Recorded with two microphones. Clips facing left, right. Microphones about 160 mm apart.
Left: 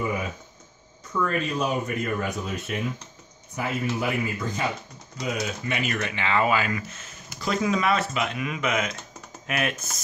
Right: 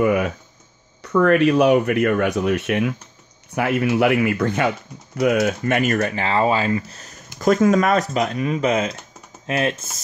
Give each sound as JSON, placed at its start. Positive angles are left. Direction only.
{"t": 0.0, "sound": "speech", "side_deg": -75}